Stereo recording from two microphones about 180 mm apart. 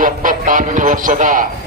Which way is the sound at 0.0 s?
50° right (ahead or behind).